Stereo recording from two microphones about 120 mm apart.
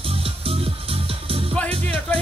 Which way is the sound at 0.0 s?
50° right (ahead or behind).